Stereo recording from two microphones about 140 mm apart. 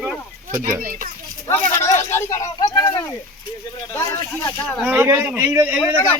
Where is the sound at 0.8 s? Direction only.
80° right.